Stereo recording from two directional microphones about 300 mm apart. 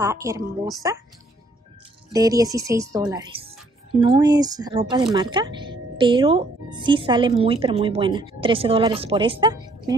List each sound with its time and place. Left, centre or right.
0.0 s speech: centre
2.1 s speech: centre